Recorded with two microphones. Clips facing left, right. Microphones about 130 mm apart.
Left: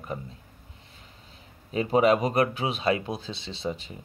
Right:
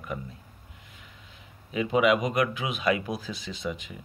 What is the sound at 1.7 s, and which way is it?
Speech, 35° left (ahead or behind).